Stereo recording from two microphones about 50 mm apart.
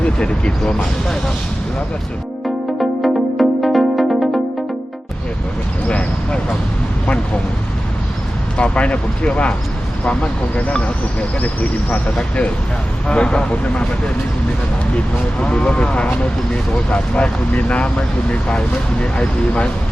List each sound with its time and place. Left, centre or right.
0.0 s speech: left
3.0 s music: centre
5.9 s speech: left
8.5 s speech: left
14.9 s speech: left